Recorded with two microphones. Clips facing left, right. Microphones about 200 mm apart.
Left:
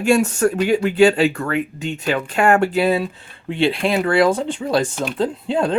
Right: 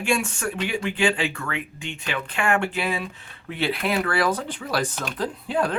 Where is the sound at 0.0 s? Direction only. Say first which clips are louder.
Left 9 dB; 40° left (ahead or behind).